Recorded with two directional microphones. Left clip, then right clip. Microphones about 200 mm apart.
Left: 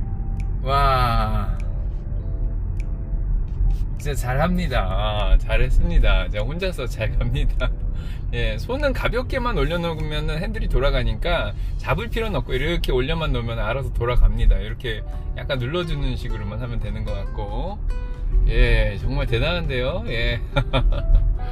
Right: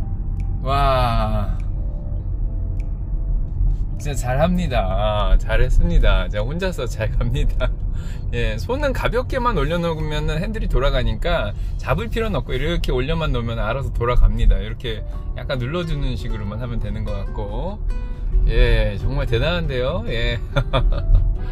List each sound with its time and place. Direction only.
4.1 s speech: 5° right (ahead or behind)
18.5 s speech: 10° right (ahead or behind)